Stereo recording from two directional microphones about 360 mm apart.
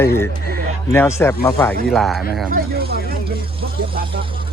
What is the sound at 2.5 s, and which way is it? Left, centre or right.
Speech, right.